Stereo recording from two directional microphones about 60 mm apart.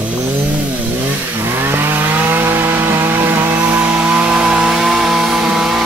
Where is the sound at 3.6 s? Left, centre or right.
Right.